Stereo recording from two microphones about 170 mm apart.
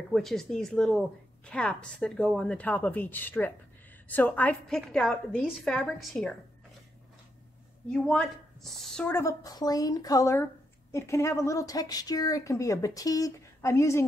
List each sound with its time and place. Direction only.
0.1 s a woman's voice: centre (ahead or behind)
7.9 s speech: 5° left (ahead or behind)